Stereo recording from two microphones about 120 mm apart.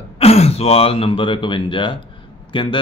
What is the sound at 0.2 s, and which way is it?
Speech, 60° left (ahead or behind).